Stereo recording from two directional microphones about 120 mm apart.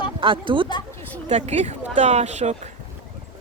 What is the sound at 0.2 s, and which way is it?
Speech, 45° right (ahead or behind).